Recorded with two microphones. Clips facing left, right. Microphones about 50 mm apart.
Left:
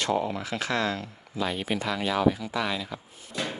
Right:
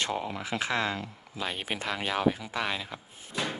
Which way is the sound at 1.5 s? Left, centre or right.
Right.